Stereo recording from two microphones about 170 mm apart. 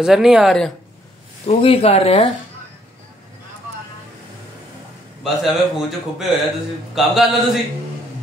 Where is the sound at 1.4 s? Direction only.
35° left (ahead or behind).